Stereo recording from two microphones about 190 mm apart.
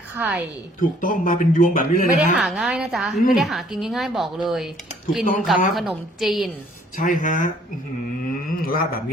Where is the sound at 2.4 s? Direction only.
Centre (ahead or behind).